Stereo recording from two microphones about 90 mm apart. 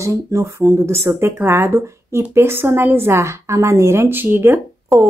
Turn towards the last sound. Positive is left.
turn(degrees=-25)  # may be behind; listen again after turning